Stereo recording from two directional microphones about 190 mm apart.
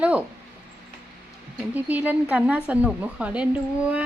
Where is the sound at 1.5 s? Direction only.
10° right (ahead or behind).